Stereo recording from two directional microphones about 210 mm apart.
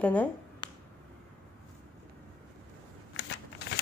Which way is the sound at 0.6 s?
20° left (ahead or behind).